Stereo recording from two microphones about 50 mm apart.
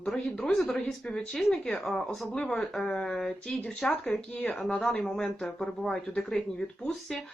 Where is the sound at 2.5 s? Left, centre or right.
Centre.